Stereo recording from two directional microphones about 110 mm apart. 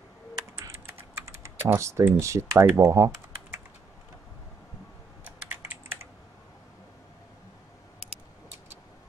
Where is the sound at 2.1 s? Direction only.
25° right (ahead or behind).